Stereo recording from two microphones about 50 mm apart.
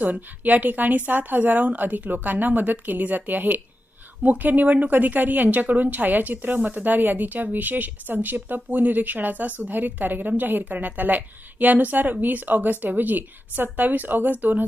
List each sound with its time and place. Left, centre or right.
0.0 s speech: right